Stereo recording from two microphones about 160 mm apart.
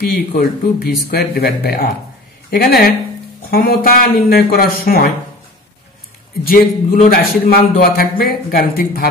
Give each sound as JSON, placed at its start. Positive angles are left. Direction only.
{"t": 0.3, "sound": "speech", "side_deg": 65}
{"t": 6.4, "sound": "a man's voice", "side_deg": 65}